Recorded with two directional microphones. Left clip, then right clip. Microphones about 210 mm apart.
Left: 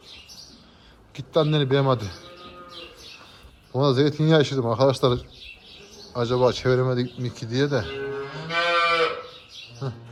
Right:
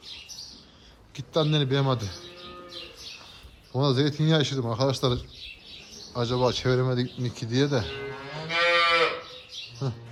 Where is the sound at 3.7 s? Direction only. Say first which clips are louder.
Left 4 dB; 15° right (ahead or behind).